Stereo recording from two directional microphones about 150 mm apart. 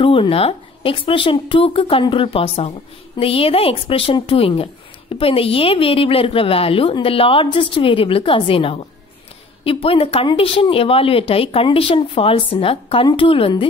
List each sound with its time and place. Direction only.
0.0 s speech: 35° left (ahead or behind)